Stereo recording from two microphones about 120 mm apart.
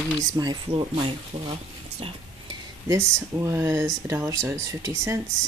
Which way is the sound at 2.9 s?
20° right (ahead or behind).